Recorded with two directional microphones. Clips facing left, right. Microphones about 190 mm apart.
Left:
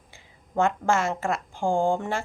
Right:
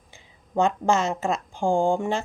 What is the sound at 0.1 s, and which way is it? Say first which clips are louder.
Speech: right 3 dB; 20° right (ahead or behind).